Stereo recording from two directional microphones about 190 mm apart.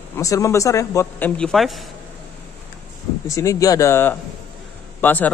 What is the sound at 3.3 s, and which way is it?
A man's voice, 15° left (ahead or behind).